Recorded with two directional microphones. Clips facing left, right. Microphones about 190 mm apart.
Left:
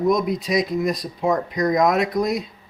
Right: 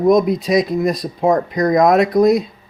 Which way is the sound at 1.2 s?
55° right (ahead or behind).